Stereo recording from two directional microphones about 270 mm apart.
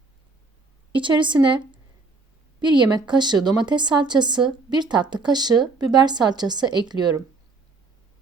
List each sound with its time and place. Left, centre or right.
0.9 s speech: centre